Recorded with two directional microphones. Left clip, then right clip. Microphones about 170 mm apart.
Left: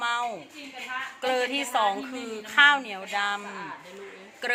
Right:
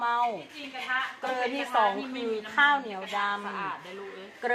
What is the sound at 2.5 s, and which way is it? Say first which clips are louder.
Speech: left 5 dB; 30° left (ahead or behind).